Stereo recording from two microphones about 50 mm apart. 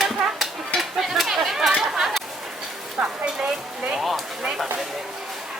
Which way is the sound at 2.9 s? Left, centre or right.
Right.